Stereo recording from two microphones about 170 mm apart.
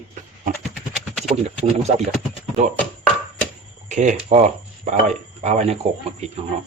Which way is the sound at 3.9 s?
45° right (ahead or behind).